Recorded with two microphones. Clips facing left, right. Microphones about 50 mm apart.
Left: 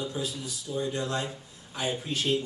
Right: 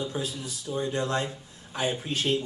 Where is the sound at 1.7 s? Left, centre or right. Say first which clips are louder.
Right 2 dB; right.